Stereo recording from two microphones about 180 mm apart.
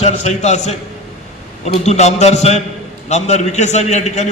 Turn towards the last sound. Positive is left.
turn(degrees=40)  # may be behind; listen again after turning